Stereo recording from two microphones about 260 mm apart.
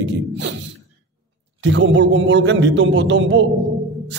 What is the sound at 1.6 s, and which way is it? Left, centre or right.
A man's voice, right.